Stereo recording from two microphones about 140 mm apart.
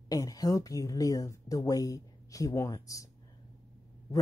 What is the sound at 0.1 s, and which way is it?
A woman's voice, 25° left (ahead or behind).